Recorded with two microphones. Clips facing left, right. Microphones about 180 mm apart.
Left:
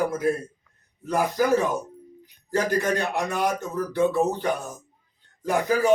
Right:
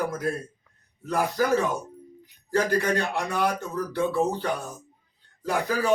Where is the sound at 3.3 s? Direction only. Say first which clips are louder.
Left 1 dB; 20° left (ahead or behind).